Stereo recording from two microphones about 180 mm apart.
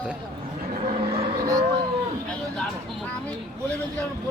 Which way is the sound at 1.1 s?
60° right (ahead or behind).